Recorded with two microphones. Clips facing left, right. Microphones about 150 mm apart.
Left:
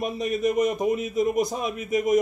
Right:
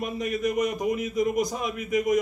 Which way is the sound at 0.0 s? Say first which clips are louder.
Left 3 dB; 25° left (ahead or behind).